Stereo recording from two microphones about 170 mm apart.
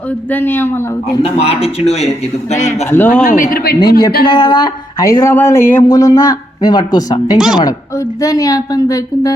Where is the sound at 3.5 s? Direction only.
65° left (ahead or behind).